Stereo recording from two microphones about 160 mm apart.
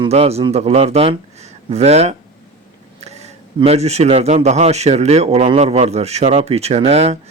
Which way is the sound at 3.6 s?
40° right (ahead or behind).